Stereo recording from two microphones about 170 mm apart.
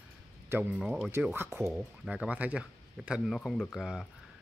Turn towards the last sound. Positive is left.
turn(degrees=0)  # may be behind; listen again after turning